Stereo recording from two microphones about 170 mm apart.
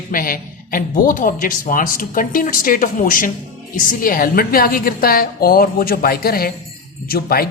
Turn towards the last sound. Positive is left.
turn(degrees=60)  # may be behind; listen again after turning